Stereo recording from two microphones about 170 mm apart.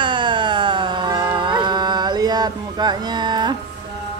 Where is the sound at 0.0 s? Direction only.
30° right (ahead or behind).